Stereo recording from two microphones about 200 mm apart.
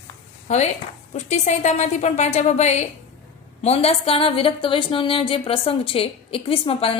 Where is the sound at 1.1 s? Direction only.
35° left (ahead or behind).